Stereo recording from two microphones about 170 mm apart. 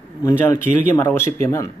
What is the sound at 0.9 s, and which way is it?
Speech, 15° left (ahead or behind).